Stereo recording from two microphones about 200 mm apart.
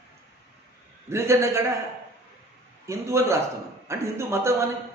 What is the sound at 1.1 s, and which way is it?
Speech, 15° right (ahead or behind).